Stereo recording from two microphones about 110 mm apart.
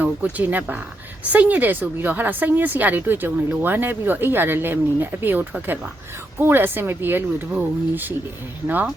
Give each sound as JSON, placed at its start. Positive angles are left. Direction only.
{"t": 0.0, "sound": "speech", "side_deg": -15}